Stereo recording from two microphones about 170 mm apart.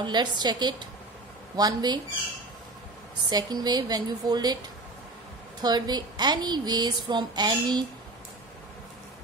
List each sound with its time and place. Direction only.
0.0 s a woman's voice: 25° right (ahead or behind)
3.3 s a woman's voice: 25° right (ahead or behind)
5.6 s a woman's voice: 25° right (ahead or behind)